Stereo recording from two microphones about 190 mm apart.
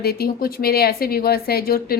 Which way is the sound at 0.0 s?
55° left (ahead or behind).